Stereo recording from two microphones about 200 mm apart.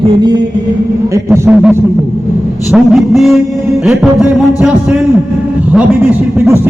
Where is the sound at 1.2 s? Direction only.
10° right (ahead or behind).